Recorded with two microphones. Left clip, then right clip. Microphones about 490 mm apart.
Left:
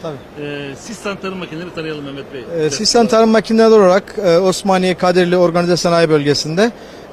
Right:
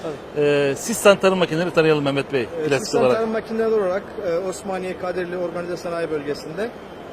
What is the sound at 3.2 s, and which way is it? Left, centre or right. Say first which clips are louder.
Speech: left 11 dB; left.